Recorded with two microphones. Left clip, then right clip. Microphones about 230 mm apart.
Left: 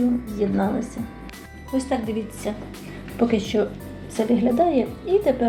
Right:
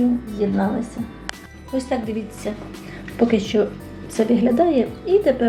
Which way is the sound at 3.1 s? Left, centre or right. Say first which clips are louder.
Right 3 dB; centre.